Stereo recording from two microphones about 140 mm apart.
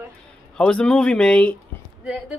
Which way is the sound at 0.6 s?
5° left (ahead or behind).